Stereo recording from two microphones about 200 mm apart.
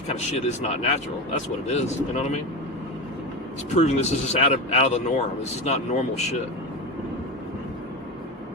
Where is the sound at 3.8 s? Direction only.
35° left (ahead or behind).